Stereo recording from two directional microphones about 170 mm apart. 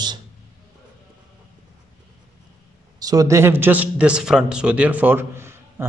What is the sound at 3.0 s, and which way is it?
Speech, 20° right (ahead or behind).